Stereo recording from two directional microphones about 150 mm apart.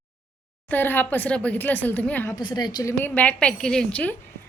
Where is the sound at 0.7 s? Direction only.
10° left (ahead or behind).